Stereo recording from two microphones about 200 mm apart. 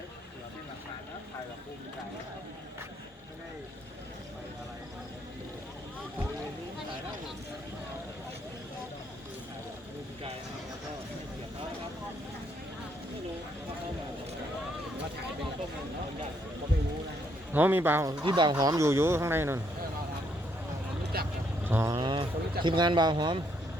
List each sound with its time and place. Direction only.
17.5 s speech: 10° right (ahead or behind)
21.0 s vehicle: 50° right (ahead or behind)
21.6 s vehicle: 10° right (ahead or behind)
21.9 s a sound: 25° right (ahead or behind)
22.6 s speech: 25° right (ahead or behind)